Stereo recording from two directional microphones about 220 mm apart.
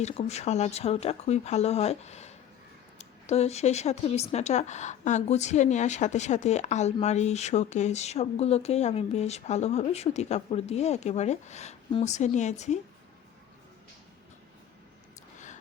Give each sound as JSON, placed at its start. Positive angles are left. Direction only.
{"t": 0.0, "sound": "speech", "side_deg": 30}